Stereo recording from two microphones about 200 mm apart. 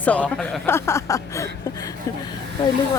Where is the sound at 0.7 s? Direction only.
15° left (ahead or behind).